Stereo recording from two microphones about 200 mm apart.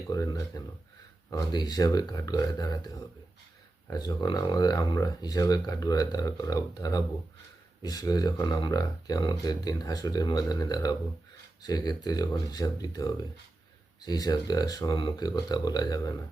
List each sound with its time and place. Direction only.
0.1 s speech: 15° left (ahead or behind)